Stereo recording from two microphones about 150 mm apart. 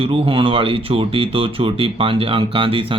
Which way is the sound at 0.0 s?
40° right (ahead or behind).